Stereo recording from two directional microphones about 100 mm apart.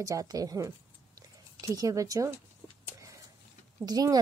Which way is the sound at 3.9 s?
40° right (ahead or behind).